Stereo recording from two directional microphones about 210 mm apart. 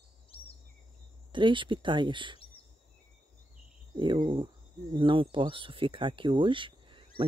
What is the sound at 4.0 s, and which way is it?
Speech, 20° right (ahead or behind).